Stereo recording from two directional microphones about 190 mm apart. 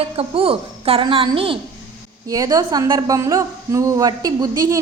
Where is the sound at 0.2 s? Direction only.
30° right (ahead or behind).